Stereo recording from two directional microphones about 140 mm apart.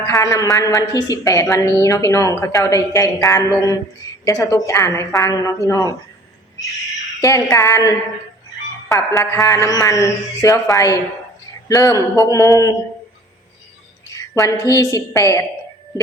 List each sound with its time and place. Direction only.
0.1 s a woman's voice: 25° left (ahead or behind)
7.2 s a woman's voice: 25° left (ahead or behind)
14.1 s a woman's voice: 25° left (ahead or behind)